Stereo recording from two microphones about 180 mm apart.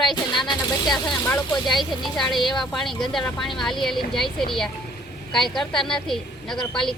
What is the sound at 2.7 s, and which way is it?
A woman's voice, centre (ahead or behind).